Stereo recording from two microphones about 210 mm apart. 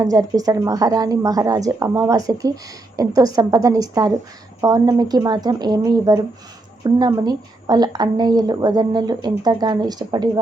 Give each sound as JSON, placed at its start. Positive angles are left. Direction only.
{"t": 0.0, "sound": "a woman's voice", "side_deg": -15}